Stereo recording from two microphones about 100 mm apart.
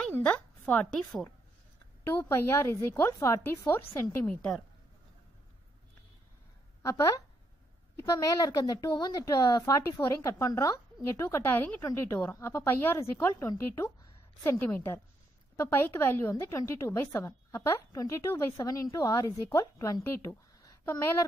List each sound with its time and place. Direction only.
0.1 s a sound: 15° left (ahead or behind)
2.0 s a woman's voice: 25° left (ahead or behind)
4.3 s a woman's voice: 10° left (ahead or behind)
6.8 s a woman's voice: 30° left (ahead or behind)